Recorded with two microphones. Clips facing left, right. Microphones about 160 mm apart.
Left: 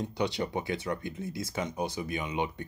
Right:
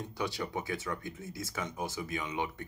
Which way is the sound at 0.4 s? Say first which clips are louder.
Left 4 dB; 20° left (ahead or behind).